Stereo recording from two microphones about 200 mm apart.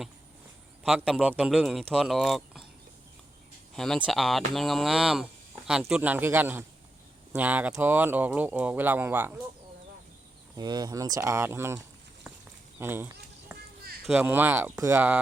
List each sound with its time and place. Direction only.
0.9 s speech: 5° right (ahead or behind)
3.8 s speech: 5° left (ahead or behind)
10.6 s speech: 20° right (ahead or behind)
12.8 s a sound: 10° right (ahead or behind)
14.0 s speech: 5° right (ahead or behind)